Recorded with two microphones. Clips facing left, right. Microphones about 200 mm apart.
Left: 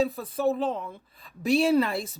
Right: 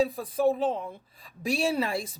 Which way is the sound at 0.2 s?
10° right (ahead or behind).